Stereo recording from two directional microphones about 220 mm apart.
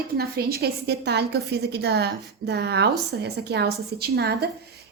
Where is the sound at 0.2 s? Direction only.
45° right (ahead or behind).